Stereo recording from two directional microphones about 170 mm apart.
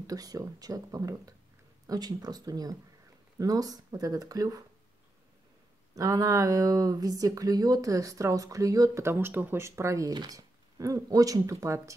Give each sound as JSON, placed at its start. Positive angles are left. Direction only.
{"t": 0.0, "sound": "speech", "side_deg": -20}
{"t": 5.9, "sound": "speech", "side_deg": -20}